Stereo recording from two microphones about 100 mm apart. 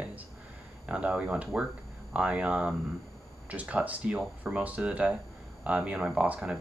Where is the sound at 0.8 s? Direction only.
15° right (ahead or behind).